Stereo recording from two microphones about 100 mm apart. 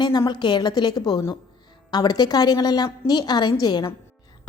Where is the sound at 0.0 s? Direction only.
45° left (ahead or behind).